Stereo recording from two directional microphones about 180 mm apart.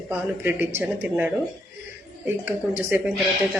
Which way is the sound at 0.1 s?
10° right (ahead or behind).